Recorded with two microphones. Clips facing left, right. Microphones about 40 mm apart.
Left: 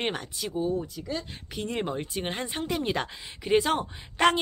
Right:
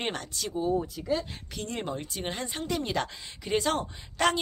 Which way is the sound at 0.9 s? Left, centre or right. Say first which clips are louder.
Right 4 dB; centre.